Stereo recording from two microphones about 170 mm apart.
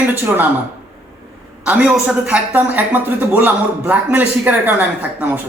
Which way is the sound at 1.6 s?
10° right (ahead or behind).